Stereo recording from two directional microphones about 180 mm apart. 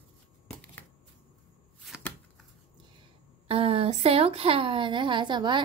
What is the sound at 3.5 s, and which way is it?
A woman's voice, 30° right (ahead or behind).